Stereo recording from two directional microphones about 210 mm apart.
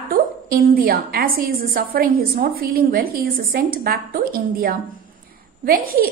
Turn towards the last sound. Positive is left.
turn(degrees=-40)  # may be behind; listen again after turning